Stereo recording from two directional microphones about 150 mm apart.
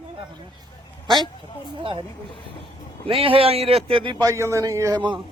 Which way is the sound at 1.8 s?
35° right (ahead or behind).